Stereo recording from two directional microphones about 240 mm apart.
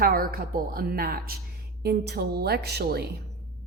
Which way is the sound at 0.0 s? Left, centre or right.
Right.